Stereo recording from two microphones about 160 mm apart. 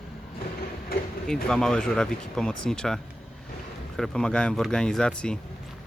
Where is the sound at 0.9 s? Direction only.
70° left (ahead or behind).